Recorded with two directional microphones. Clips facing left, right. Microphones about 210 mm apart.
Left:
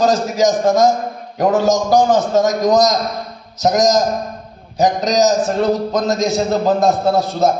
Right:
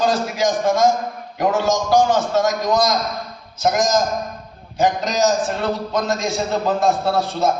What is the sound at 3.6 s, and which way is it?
A man's voice, 40° left (ahead or behind).